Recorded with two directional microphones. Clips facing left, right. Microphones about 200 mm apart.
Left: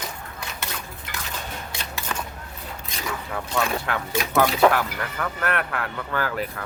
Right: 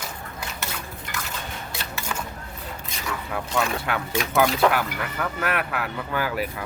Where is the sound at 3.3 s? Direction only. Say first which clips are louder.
Even; centre (ahead or behind).